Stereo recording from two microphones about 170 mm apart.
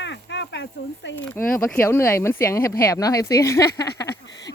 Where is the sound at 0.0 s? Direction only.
90° left.